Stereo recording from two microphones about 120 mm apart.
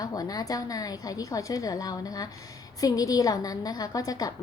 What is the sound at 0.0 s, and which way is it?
A woman's voice, 30° left (ahead or behind).